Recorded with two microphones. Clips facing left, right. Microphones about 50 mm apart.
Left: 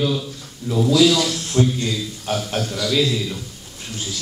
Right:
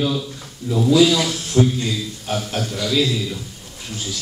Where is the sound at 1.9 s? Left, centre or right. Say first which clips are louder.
Even; centre.